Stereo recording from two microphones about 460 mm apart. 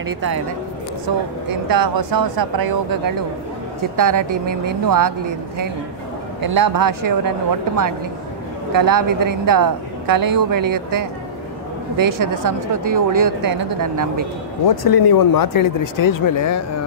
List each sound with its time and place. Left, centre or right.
1.7 s speech: right
3.9 s speech: right
6.4 s speech: right
14.7 s speech: left